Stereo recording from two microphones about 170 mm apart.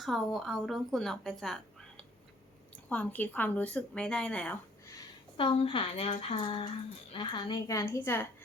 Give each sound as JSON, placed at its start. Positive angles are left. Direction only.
{"t": 0.0, "sound": "a woman's voice", "side_deg": 0}
{"t": 2.9, "sound": "a woman's voice", "side_deg": 10}
{"t": 5.4, "sound": "a woman's voice", "side_deg": 30}